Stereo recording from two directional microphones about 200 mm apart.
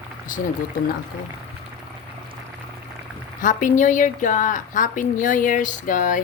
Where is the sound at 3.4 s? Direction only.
40° left (ahead or behind).